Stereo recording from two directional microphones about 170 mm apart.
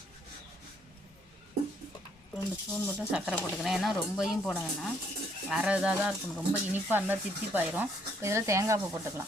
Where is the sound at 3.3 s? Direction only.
5° left (ahead or behind); by 9.2 s 15° right (ahead or behind).